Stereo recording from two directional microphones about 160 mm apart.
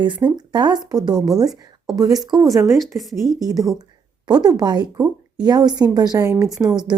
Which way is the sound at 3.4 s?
25° right (ahead or behind).